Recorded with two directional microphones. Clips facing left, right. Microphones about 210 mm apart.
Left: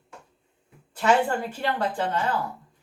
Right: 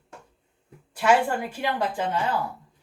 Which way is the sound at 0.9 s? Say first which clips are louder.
Even; 10° right (ahead or behind).